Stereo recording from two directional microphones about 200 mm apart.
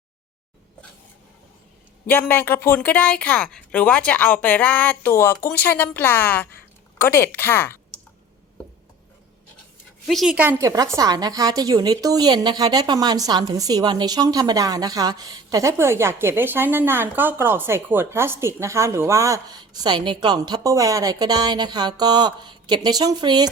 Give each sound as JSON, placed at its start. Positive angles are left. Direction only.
{"t": 2.0, "sound": "a woman's voice", "side_deg": 10}
{"t": 10.1, "sound": "a woman's voice", "side_deg": 0}